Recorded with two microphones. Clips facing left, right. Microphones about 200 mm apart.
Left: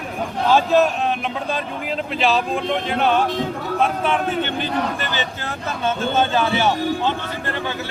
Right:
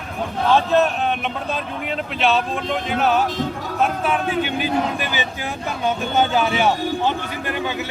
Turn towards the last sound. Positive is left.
turn(degrees=-15)  # may be behind; listen again after turning